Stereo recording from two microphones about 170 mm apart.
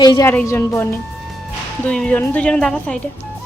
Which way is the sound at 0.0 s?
25° left (ahead or behind).